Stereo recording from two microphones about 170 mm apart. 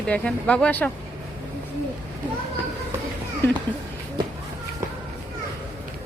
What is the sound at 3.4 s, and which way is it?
Speech, 15° left (ahead or behind).